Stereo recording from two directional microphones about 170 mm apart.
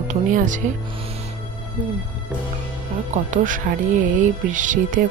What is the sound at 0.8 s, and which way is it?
Music, 35° right (ahead or behind).